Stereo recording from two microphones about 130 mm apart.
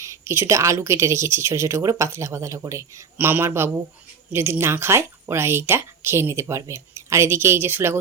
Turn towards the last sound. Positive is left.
turn(degrees=-20)  # may be behind; listen again after turning